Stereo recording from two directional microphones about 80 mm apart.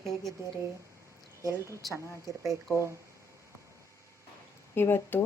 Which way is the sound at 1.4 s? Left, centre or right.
Right.